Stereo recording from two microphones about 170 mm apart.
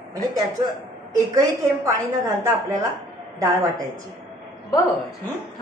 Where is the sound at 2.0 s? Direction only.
20° right (ahead or behind).